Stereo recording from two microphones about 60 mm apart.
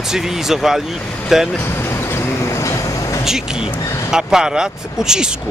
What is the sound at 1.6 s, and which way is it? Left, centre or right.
Vehicle, left.